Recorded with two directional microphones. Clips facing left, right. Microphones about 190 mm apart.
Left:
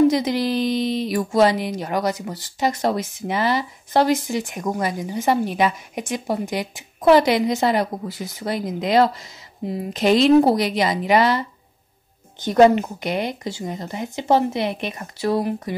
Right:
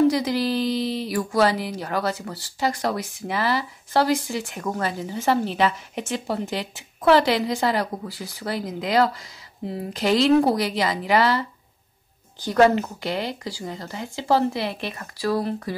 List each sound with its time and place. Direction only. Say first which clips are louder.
0.1 s speech: left 2 dB; 20° left (ahead or behind)